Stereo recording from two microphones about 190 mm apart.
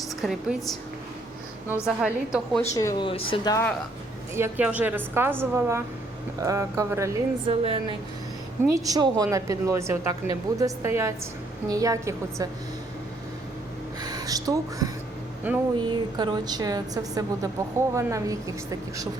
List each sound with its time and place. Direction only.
0.2 s a woman's voice: centre (ahead or behind)
1.6 s a woman's voice: 10° right (ahead or behind)
2.7 s speech: 20° left (ahead or behind)
4.4 s a woman's voice: 10° right (ahead or behind)
7.4 s a woman's voice: 25° right (ahead or behind)
14.0 s a woman's voice: 20° right (ahead or behind)
15.9 s a woman's voice: 25° right (ahead or behind)